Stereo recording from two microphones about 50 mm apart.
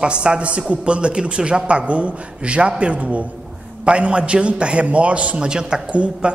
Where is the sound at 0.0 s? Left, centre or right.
Centre.